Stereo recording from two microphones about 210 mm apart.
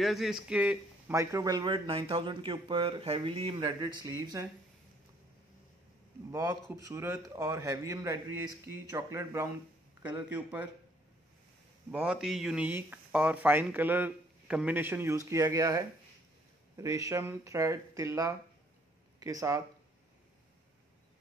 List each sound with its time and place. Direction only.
0.0 s a man's voice: centre (ahead or behind); by 4.5 s 15° right (ahead or behind)
6.9 s speech: 15° right (ahead or behind)
11.9 s speech: 5° right (ahead or behind)